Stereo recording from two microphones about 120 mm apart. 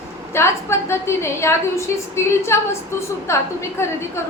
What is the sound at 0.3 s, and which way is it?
A woman's voice, 20° left (ahead or behind).